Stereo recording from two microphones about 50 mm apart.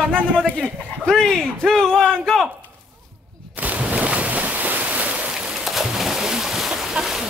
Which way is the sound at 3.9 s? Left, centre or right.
Right.